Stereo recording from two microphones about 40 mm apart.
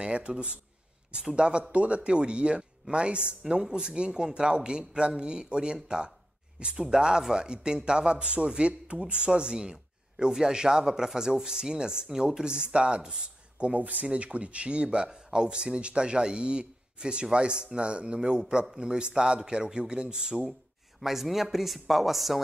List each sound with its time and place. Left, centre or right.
0.0 s speech: right
13.7 s speech: right
21.0 s speech: centre